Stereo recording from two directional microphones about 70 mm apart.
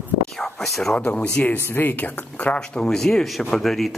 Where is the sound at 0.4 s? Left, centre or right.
Centre.